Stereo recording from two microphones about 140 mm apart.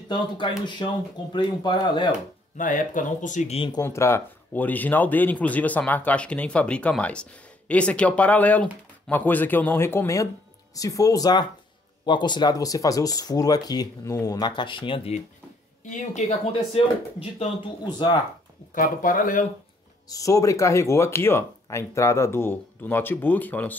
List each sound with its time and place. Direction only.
0.1 s speech: 35° left (ahead or behind)
2.5 s speech: 70° left (ahead or behind)
3.5 s speech: 35° left (ahead or behind)
3.8 s speech: 20° left (ahead or behind); by 15.0 s 35° left (ahead or behind)
15.9 s speech: 55° left (ahead or behind)
17.8 s speech: 30° left (ahead or behind)
18.8 s speech: 75° left (ahead or behind)
20.1 s speech: 25° left (ahead or behind)